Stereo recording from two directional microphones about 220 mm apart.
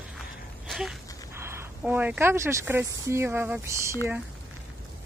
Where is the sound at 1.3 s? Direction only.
10° right (ahead or behind).